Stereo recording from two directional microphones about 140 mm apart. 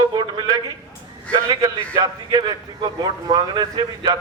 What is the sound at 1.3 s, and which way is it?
A man's voice, 25° right (ahead or behind).